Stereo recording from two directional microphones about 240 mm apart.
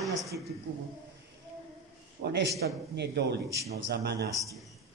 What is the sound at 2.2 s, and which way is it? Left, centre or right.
A man's voice, right.